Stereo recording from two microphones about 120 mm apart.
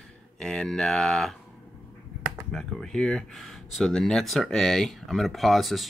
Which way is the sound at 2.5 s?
5° left (ahead or behind).